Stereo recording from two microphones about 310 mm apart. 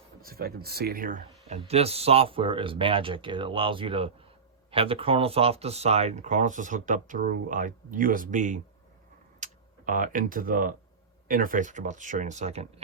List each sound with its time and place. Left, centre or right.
0.2 s speech: right